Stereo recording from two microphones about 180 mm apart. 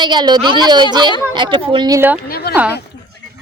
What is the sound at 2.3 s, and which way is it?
Speech, 60° left (ahead or behind).